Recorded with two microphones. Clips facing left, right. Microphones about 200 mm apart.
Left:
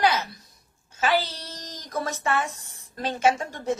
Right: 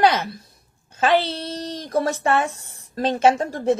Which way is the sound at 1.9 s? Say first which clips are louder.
Right 7 dB; 30° right (ahead or behind).